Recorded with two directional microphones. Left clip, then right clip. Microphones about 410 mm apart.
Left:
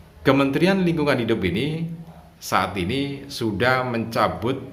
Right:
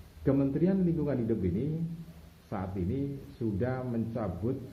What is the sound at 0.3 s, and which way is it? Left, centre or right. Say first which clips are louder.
Speech: left 11 dB; centre.